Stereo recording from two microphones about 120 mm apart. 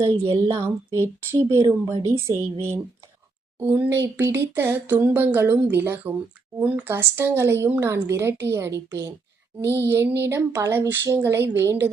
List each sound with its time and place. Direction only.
0.0 s a woman's voice: 45° right (ahead or behind)
0.9 s speech: 20° right (ahead or behind)
1.8 s speech: 35° right (ahead or behind)
2.0 s speech: 25° right (ahead or behind)